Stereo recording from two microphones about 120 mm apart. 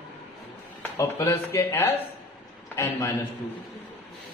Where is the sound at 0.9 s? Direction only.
20° left (ahead or behind).